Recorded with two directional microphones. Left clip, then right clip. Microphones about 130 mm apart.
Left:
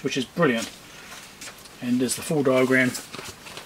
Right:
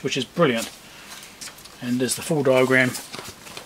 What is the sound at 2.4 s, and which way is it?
Speech, 40° right (ahead or behind).